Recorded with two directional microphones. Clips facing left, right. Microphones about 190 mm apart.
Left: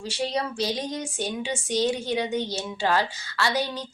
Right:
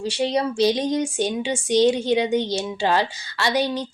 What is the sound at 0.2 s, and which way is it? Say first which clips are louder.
Speech: right 7 dB; 20° right (ahead or behind).